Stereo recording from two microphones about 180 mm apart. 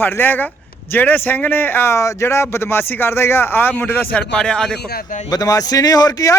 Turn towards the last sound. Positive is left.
turn(degrees=20)  # may be behind; listen again after turning